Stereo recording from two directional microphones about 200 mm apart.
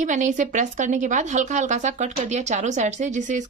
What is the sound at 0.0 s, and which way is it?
A woman's voice, 40° right (ahead or behind).